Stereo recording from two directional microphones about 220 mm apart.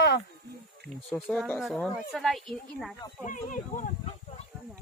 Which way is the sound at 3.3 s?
35° left (ahead or behind).